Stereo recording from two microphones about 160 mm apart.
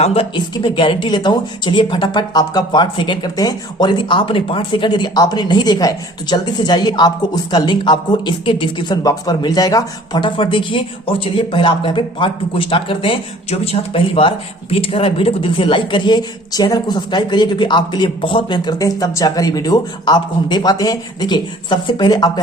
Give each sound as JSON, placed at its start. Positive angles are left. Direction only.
{"t": 0.0, "sound": "speech", "side_deg": 35}